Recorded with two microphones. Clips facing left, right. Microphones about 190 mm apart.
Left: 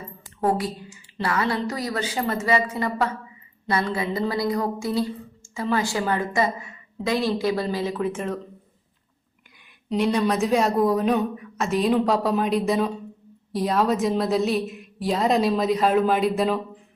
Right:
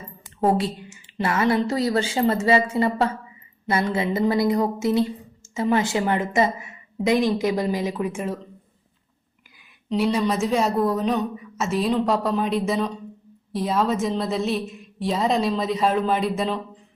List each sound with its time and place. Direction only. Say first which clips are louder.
0.4 s a woman's voice: right 2 dB; 25° right (ahead or behind); by 8.4 s 10° right (ahead or behind)
10.0 s a woman's voice: even; 5° right (ahead or behind)